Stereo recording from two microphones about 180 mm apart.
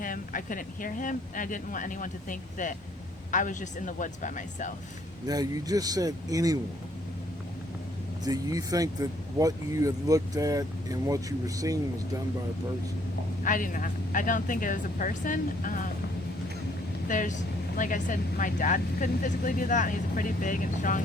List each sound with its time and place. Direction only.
0.0 s speech: 50° left (ahead or behind)
5.2 s speech: 20° right (ahead or behind)
8.2 s speech: 20° right (ahead or behind)
13.4 s speech: 50° left (ahead or behind)
17.1 s speech: 45° left (ahead or behind)